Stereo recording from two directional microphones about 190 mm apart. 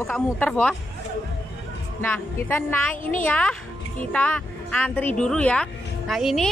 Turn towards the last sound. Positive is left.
turn(degrees=0)  # may be behind; listen again after turning